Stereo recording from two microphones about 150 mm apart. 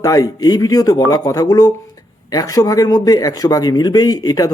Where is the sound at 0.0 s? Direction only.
25° left (ahead or behind).